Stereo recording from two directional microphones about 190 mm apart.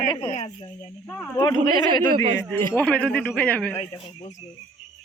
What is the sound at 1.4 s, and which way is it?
A man's voice, 20° left (ahead or behind).